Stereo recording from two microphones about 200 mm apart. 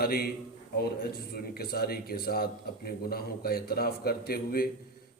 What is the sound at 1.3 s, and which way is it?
A man's voice, 50° left (ahead or behind).